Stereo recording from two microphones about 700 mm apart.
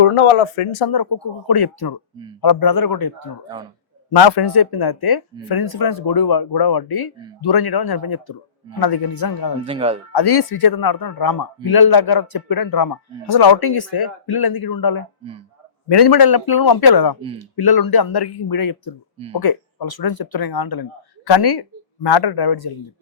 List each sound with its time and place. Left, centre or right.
0.0 s a man's voice: left
9.6 s speech: centre
10.1 s a man's voice: left